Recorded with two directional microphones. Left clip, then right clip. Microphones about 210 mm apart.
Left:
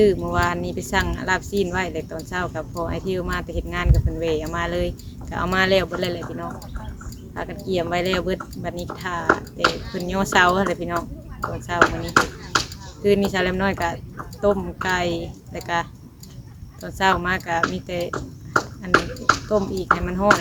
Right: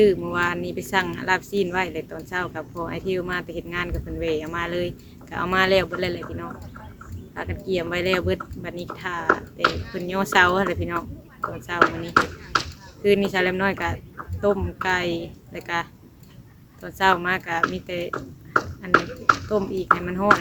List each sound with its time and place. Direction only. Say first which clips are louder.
0.0 s speech: left 1 dB; 5° right (ahead or behind)
7.3 s speech: left 2 dB; 5° right (ahead or behind)
9.2 s speech: left 1 dB; 30° left (ahead or behind)
9.9 s speech: left 1 dB; 5° right (ahead or behind)
11.8 s speech: left 1 dB; 30° left (ahead or behind)
13.0 s speech: even; 5° right (ahead or behind)